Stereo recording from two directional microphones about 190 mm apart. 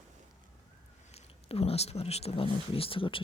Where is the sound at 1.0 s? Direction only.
30° left (ahead or behind).